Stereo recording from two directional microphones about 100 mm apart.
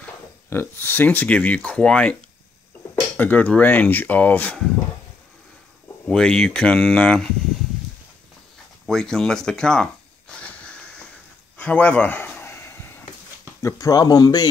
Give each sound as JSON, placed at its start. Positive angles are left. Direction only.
{"t": 0.5, "sound": "speech", "side_deg": 20}
{"t": 3.2, "sound": "speech", "side_deg": 15}
{"t": 6.0, "sound": "speech", "side_deg": 5}
{"t": 8.8, "sound": "speech", "side_deg": 5}
{"t": 10.4, "sound": "wheeze", "side_deg": 10}
{"t": 11.5, "sound": "a sound", "side_deg": 10}
{"t": 13.6, "sound": "speech", "side_deg": 35}